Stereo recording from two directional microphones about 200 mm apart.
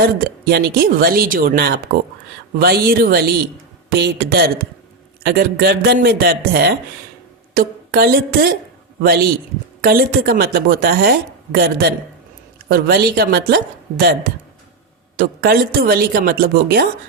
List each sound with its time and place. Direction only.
0.0 s a woman's voice: 50° right (ahead or behind)